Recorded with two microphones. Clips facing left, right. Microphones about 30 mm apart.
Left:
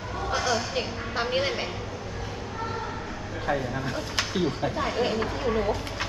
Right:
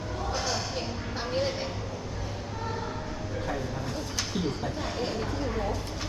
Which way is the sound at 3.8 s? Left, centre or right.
Left.